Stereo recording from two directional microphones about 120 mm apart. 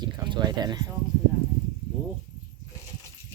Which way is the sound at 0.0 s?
35° right (ahead or behind).